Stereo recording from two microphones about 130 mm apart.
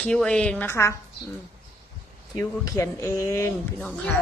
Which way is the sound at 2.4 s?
25° left (ahead or behind).